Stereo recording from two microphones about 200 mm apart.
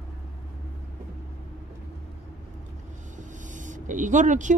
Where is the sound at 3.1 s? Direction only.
40° right (ahead or behind).